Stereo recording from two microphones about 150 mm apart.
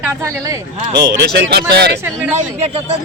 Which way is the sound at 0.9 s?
90° right.